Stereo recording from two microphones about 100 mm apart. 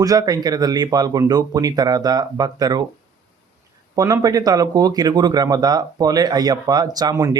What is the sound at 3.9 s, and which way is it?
Speech, 35° right (ahead or behind).